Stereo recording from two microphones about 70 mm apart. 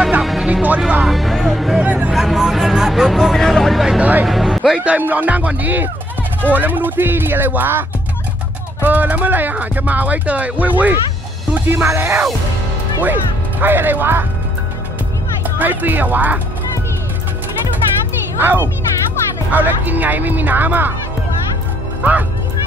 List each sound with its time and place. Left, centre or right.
0.2 s music: centre
0.5 s speech: right
1.0 s speech: centre
1.8 s speech: centre
2.1 s speech: centre
4.0 s speech: right
4.3 s a man's voice: centre
4.7 s speech: right
8.8 s speech: right
15.6 s speech: right
18.4 s speech: right
22.0 s speech: right